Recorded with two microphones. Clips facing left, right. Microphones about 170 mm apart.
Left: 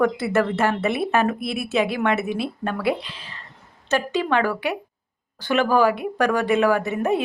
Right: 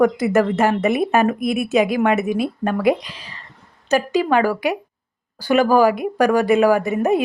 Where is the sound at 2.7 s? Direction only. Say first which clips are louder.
Right 6 dB; 40° right (ahead or behind).